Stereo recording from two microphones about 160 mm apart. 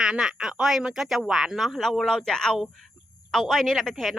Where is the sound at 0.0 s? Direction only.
5° right (ahead or behind).